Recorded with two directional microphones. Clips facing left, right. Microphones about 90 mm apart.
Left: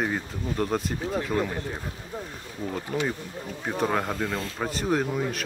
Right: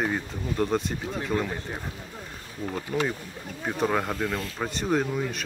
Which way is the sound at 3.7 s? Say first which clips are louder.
Even; centre (ahead or behind).